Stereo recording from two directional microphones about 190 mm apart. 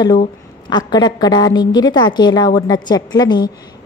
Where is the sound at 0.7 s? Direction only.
20° left (ahead or behind).